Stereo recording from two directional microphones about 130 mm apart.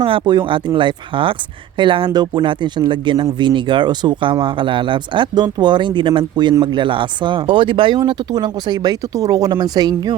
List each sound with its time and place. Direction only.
0.0 s speech: 40° right (ahead or behind)